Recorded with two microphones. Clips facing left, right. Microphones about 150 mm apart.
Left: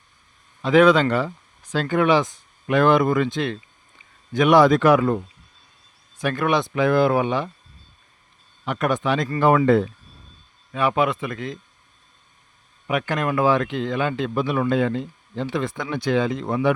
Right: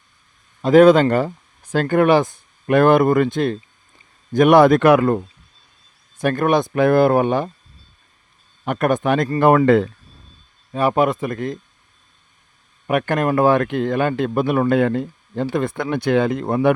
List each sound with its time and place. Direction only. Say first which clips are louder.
0.6 s speech: right 5 dB; 45° right (ahead or behind); by 5.2 s 60° right (ahead or behind)
6.1 s speech: right 4 dB; 50° right (ahead or behind)
8.6 s speech: right 4 dB; 50° right (ahead or behind)
9.6 s speech: right 3 dB; 80° right
10.7 s speech: right 4 dB; 40° right (ahead or behind)
12.9 s speech: right 5 dB; 50° right (ahead or behind)